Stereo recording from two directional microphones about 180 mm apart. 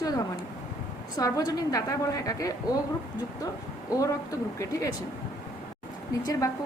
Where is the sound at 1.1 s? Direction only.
20° left (ahead or behind).